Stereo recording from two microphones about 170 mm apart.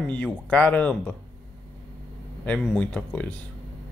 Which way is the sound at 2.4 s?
5° left (ahead or behind).